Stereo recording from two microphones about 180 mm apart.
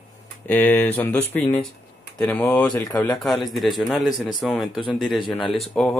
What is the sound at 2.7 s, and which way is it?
Speech, 20° left (ahead or behind).